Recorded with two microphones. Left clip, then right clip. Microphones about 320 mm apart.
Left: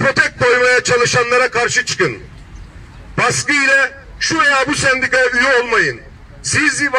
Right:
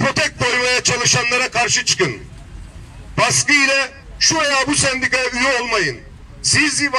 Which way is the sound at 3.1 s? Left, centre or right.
Centre.